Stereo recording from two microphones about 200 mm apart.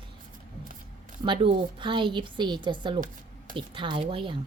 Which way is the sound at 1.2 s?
25° right (ahead or behind).